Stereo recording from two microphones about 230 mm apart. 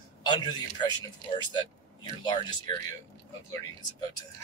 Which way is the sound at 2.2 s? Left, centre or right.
Centre.